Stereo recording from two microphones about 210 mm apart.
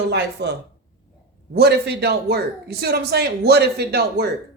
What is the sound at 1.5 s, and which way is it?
A man's voice, 50° right (ahead or behind).